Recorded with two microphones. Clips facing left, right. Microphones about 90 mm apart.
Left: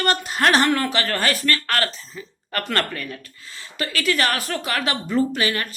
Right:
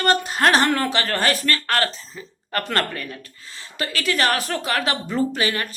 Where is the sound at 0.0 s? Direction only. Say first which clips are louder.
Right 2 dB; 35° right (ahead or behind).